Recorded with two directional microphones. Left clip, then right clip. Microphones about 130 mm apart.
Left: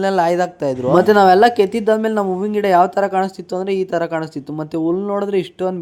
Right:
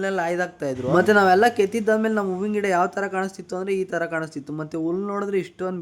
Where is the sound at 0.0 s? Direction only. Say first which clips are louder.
Left 8 dB; 45° left (ahead or behind).